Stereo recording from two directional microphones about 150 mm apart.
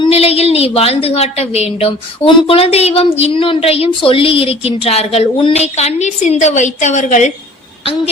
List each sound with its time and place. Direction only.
0.0 s a woman's voice: 40° left (ahead or behind)